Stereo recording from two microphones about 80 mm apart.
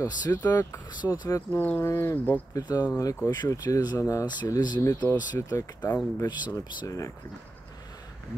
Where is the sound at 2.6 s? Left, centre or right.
Left.